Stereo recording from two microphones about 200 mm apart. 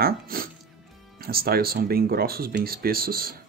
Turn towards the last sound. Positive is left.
turn(degrees=-50)  # may be behind; listen again after turning